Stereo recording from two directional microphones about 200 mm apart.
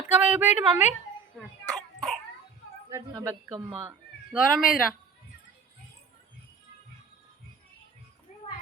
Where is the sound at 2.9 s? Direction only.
15° right (ahead or behind).